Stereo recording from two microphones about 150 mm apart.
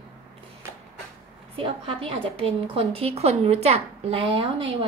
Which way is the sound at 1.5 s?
40° right (ahead or behind).